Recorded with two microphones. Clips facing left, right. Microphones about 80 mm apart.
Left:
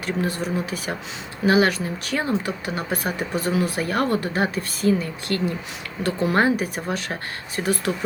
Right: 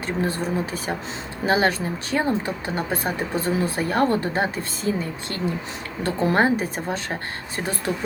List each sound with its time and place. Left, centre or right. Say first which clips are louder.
0.0 s speech: even; right